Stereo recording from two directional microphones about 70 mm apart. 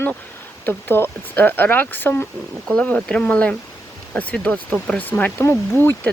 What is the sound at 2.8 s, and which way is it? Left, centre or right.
Speech, centre.